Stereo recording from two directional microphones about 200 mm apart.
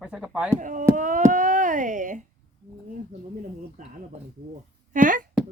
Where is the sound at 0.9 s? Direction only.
40° right (ahead or behind).